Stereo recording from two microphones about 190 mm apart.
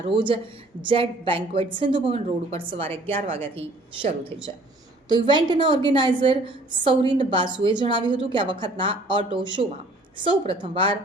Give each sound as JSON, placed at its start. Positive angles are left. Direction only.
{"t": 0.0, "sound": "a woman's voice", "side_deg": -25}